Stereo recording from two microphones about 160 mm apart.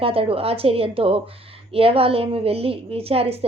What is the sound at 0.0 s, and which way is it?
A woman's voice, 35° right (ahead or behind).